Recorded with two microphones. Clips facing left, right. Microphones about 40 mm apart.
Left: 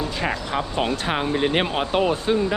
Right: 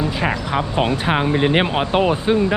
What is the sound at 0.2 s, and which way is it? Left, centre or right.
Speech, centre.